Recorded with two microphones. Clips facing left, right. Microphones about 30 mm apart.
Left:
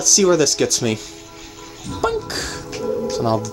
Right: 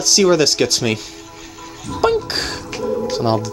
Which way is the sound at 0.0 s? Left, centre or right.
Right.